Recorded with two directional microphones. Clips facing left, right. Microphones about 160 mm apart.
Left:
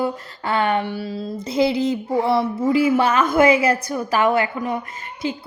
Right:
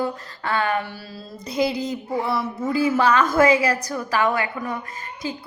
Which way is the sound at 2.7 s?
20° left (ahead or behind).